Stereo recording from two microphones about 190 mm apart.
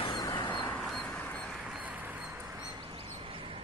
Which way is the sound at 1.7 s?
10° right (ahead or behind).